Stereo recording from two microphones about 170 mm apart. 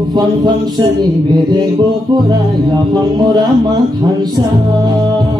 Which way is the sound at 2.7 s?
25° right (ahead or behind).